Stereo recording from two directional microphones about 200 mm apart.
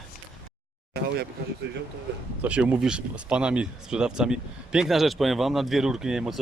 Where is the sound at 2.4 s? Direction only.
5° right (ahead or behind).